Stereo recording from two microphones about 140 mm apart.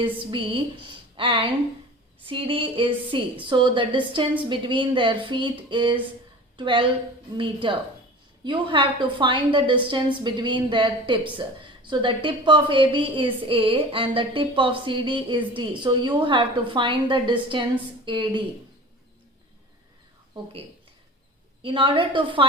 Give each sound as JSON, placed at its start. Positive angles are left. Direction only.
{"t": 0.0, "sound": "a woman's voice", "side_deg": -35}
{"t": 21.6, "sound": "a woman's voice", "side_deg": -35}